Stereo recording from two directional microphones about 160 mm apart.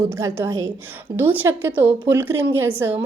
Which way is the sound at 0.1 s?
15° right (ahead or behind).